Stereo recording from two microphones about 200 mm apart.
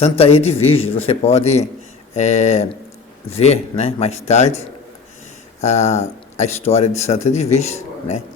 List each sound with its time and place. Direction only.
0.0 s speech: 30° left (ahead or behind)